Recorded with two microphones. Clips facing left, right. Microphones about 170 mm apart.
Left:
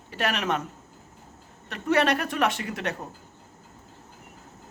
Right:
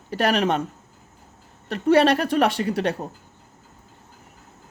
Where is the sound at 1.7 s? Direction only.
30° right (ahead or behind).